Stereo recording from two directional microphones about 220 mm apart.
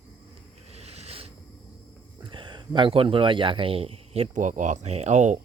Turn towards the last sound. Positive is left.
turn(degrees=-30)  # may be behind; listen again after turning